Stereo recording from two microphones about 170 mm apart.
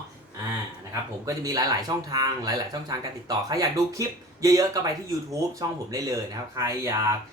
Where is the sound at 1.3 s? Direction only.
20° right (ahead or behind).